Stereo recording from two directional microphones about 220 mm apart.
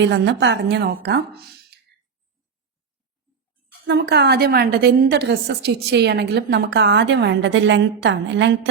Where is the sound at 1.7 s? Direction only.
50° right (ahead or behind).